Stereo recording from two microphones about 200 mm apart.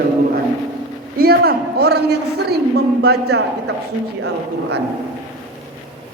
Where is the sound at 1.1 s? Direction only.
50° right (ahead or behind).